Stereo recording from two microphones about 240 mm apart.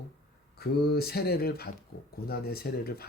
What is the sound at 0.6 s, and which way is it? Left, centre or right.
Speech, left.